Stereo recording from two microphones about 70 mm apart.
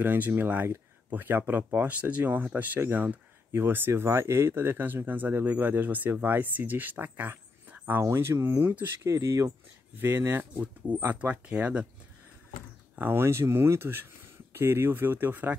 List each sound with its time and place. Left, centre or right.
0.0 s speech: right
8.0 s speech: right
9.9 s speech: right
12.9 s speech: right